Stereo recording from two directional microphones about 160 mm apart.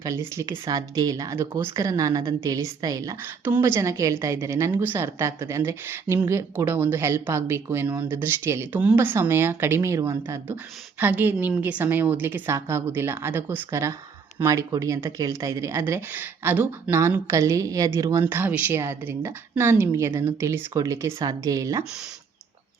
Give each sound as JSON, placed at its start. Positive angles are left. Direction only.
{"t": 0.0, "sound": "speech", "side_deg": -20}